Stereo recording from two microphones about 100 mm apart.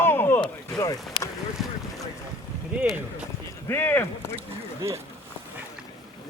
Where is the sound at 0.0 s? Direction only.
20° left (ahead or behind).